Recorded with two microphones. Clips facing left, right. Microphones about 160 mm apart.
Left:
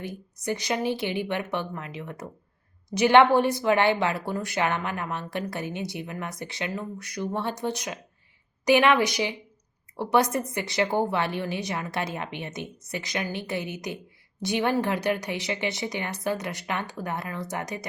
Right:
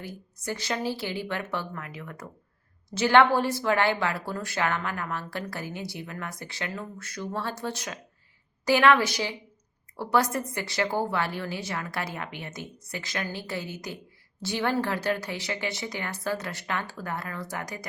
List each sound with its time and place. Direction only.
0.0 s a woman's voice: 20° left (ahead or behind)